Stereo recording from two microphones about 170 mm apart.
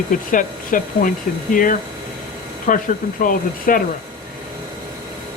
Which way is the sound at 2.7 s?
50° left (ahead or behind).